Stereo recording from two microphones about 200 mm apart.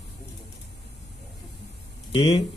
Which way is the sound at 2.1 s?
25° left (ahead or behind).